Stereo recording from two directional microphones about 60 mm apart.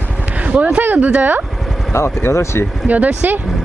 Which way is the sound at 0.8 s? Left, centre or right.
Right.